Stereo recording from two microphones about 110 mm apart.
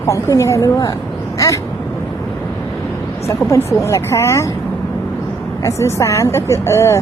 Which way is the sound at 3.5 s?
30° left (ahead or behind).